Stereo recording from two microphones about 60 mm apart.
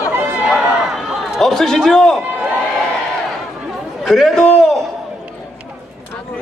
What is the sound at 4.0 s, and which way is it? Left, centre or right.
Speech, centre.